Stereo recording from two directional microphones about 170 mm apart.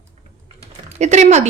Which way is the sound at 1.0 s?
40° right (ahead or behind).